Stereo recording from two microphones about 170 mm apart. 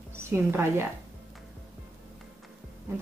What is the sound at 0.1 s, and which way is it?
Speech, 15° right (ahead or behind).